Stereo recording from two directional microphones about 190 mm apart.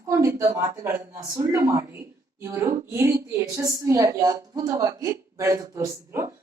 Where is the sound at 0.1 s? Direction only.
15° right (ahead or behind).